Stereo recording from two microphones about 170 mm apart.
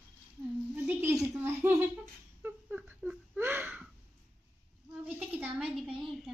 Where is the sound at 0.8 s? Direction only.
10° right (ahead or behind).